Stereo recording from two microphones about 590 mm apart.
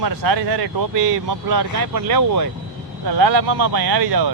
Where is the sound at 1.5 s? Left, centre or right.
Right.